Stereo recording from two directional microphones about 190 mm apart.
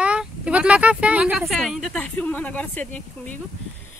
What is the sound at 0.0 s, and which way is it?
Speech, 5° right (ahead or behind).